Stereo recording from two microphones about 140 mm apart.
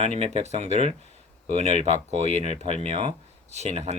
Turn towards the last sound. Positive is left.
turn(degrees=-50)  # may be behind; listen again after turning